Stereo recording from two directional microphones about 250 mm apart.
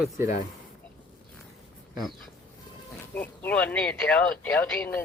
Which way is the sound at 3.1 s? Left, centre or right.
Centre.